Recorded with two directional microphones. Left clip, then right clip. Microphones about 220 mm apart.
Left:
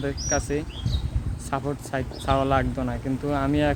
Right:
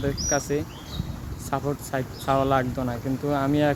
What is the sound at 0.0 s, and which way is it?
Speech, centre (ahead or behind).